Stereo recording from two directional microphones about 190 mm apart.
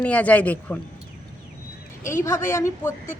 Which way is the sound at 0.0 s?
5° left (ahead or behind).